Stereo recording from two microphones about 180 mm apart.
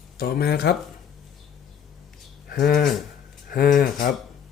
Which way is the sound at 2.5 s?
55° left (ahead or behind).